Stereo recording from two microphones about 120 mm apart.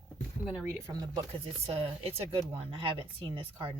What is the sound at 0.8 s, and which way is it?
Speech, 30° right (ahead or behind).